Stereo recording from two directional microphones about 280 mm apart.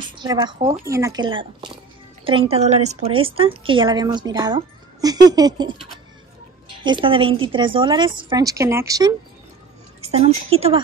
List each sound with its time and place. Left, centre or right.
0.2 s a woman's voice: centre